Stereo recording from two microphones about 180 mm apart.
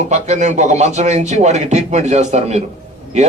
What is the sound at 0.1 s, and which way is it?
A man's voice, 40° right (ahead or behind).